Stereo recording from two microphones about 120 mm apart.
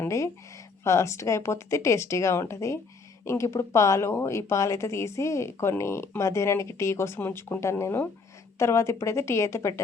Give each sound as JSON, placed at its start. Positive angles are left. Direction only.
{"t": 0.0, "sound": "speech", "side_deg": 25}